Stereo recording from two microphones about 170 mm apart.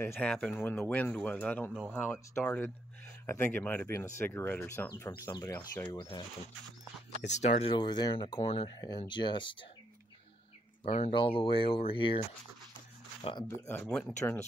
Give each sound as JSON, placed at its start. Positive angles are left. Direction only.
{"t": 0.1, "sound": "speech", "side_deg": 5}
{"t": 1.7, "sound": "speech", "side_deg": -5}
{"t": 2.0, "sound": "speech", "side_deg": 15}
{"t": 7.3, "sound": "speech", "side_deg": 40}
{"t": 10.8, "sound": "speech", "side_deg": 35}
{"t": 13.2, "sound": "speech", "side_deg": 30}
{"t": 13.7, "sound": "speech", "side_deg": 10}